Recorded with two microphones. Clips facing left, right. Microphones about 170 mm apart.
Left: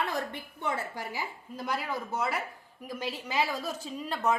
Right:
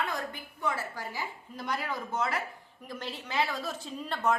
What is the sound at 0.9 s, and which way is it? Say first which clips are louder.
A woman's voice: left 1 dB; 10° left (ahead or behind).